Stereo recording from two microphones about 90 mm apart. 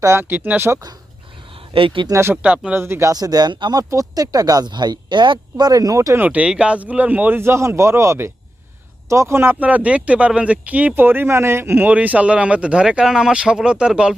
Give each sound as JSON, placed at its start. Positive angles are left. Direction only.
{"t": 0.0, "sound": "speech", "side_deg": -30}
{"t": 0.7, "sound": "speech", "side_deg": -45}
{"t": 1.7, "sound": "speech", "side_deg": -75}
{"t": 2.0, "sound": "speech", "side_deg": -35}
{"t": 2.3, "sound": "speech", "side_deg": -15}
{"t": 2.7, "sound": "speech", "side_deg": -25}
{"t": 3.1, "sound": "speech", "side_deg": -45}
{"t": 6.1, "sound": "speech", "side_deg": -20}